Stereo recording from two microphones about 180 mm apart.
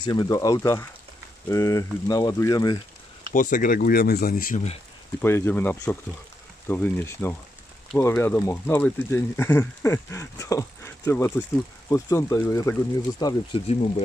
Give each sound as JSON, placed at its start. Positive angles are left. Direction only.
{"t": 0.0, "sound": "speech", "side_deg": 25}
{"t": 3.3, "sound": "speech", "side_deg": 45}
{"t": 5.2, "sound": "speech", "side_deg": 15}
{"t": 13.7, "sound": "speech", "side_deg": 35}